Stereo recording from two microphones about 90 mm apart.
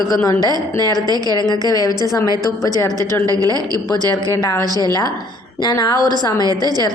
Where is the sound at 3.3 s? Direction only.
40° right (ahead or behind).